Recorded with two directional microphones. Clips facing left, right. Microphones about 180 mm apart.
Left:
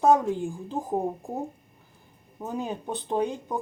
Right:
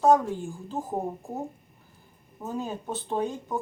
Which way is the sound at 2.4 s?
20° left (ahead or behind).